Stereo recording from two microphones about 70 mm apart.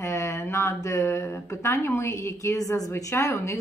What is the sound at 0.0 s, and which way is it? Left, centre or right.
A woman's voice, left.